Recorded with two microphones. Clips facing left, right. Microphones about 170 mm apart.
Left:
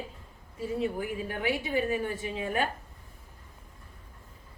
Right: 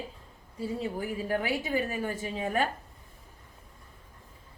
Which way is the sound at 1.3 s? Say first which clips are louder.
Right 1 dB; 40° right (ahead or behind).